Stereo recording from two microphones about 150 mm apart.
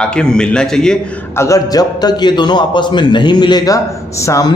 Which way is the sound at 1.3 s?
20° left (ahead or behind).